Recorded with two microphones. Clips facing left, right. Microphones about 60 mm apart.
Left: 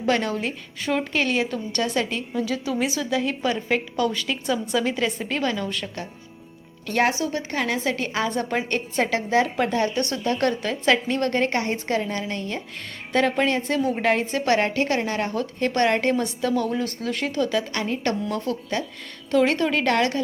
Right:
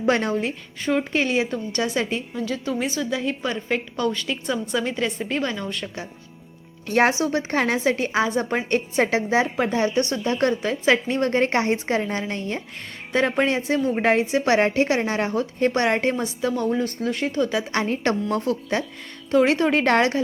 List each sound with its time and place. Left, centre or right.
0.0 s a woman's voice: right
0.3 s a woman's voice: centre
2.3 s a woman's voice: centre
7.3 s speech: right
7.9 s a woman's voice: centre
17.5 s a woman's voice: right
17.8 s a woman's voice: right